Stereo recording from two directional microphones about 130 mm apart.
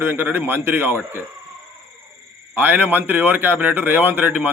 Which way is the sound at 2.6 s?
15° right (ahead or behind).